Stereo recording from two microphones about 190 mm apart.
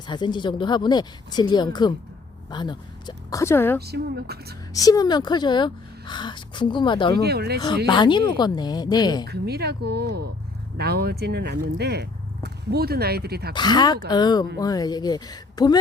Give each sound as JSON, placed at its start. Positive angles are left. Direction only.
{"t": 0.1, "sound": "speech", "side_deg": 25}
{"t": 3.8, "sound": "speech", "side_deg": -60}
{"t": 4.7, "sound": "speech", "side_deg": 20}
{"t": 7.2, "sound": "speech", "side_deg": -60}
{"t": 7.9, "sound": "speech", "side_deg": 25}
{"t": 9.2, "sound": "speech", "side_deg": -60}
{"t": 13.5, "sound": "speech", "side_deg": 20}